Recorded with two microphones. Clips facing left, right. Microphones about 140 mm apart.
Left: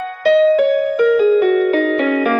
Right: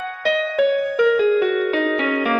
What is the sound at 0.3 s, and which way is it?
Music, 45° left (ahead or behind).